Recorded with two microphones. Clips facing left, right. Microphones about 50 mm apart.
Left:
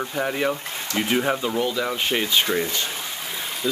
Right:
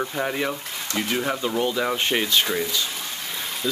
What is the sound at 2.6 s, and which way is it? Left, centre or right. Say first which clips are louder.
Speech: even; left.